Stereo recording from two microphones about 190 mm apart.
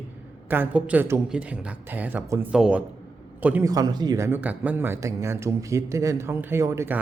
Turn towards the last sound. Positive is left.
turn(degrees=-15)  # may be behind; listen again after turning